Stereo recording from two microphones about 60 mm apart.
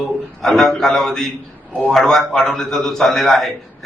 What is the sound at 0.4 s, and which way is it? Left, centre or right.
A man's voice, centre.